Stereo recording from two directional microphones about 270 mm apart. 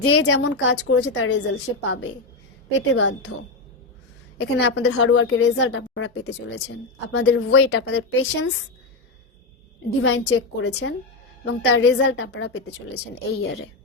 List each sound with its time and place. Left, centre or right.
0.0 s a woman's voice: left
4.4 s a woman's voice: left
7.9 s a woman's voice: left
10.0 s a woman's voice: left